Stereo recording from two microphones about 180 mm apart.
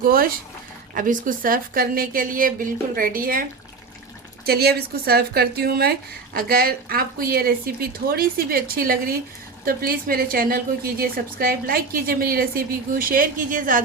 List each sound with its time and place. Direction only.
0.0 s a woman's voice: 55° right (ahead or behind)
4.4 s a woman's voice: 60° right (ahead or behind)